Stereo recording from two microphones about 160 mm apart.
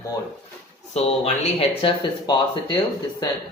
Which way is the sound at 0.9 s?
35° left (ahead or behind).